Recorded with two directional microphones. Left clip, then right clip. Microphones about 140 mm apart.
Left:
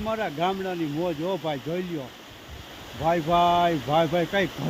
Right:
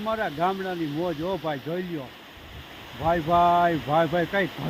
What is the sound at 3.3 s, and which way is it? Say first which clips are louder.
Speech: right 1 dB; centre (ahead or behind).